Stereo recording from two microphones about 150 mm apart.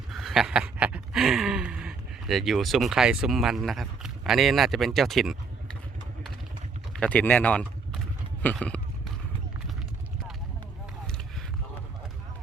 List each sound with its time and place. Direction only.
0.1 s a sound: centre (ahead or behind)
7.0 s speech: 10° left (ahead or behind)
7.9 s clip-clop: 5° left (ahead or behind)